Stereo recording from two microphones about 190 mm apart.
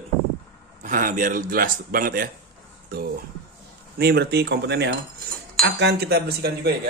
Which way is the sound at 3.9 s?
55° right (ahead or behind).